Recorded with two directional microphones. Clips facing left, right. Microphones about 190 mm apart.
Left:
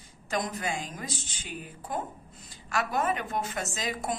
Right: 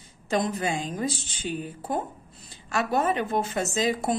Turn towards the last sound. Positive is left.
turn(degrees=-30)  # may be behind; listen again after turning